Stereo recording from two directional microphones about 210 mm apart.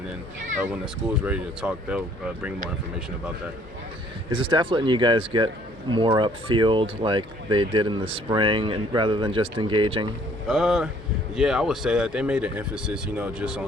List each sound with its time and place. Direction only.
1.2 s speech: 5° right (ahead or behind)
4.3 s speech: 25° right (ahead or behind)
10.5 s speech: centre (ahead or behind)